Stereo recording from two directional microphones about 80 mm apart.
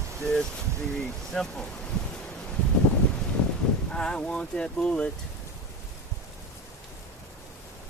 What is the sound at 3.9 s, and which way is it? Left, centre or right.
Speech, centre.